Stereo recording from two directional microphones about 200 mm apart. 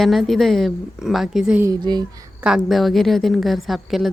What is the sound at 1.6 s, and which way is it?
Speech, 20° right (ahead or behind).